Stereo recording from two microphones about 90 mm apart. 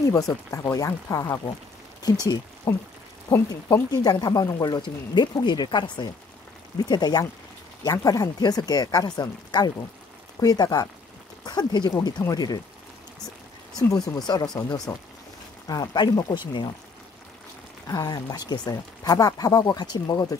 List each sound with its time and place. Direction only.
0.1 s speech: 40° left (ahead or behind)
2.0 s speech: 45° left (ahead or behind)
13.7 s speech: 40° left (ahead or behind)
17.8 s speech: 45° left (ahead or behind)